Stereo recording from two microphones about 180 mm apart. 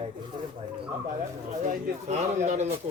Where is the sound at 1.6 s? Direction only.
40° right (ahead or behind).